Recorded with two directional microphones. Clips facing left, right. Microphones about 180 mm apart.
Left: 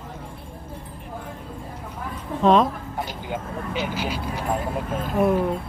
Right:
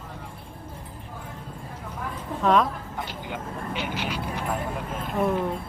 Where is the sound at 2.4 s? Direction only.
25° left (ahead or behind).